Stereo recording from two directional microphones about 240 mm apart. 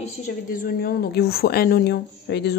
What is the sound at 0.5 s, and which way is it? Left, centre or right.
Speech, left.